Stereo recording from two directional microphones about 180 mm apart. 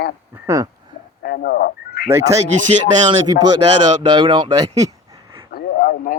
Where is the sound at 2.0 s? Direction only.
15° right (ahead or behind).